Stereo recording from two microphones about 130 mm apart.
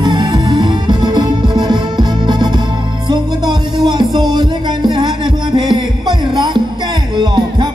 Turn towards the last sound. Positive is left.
turn(degrees=-35)  # may be behind; listen again after turning